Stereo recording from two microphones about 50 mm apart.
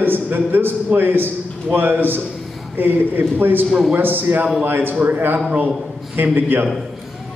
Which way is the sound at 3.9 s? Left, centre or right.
Right.